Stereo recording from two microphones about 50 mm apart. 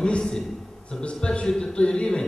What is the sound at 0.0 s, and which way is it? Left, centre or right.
A man's voice, centre.